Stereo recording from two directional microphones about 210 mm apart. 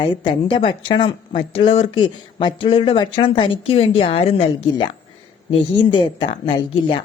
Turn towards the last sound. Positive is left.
turn(degrees=25)  # may be behind; listen again after turning